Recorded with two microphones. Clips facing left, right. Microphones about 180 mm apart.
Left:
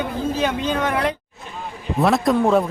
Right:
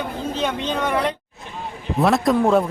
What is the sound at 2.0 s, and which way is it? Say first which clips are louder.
Speech: even; centre (ahead or behind).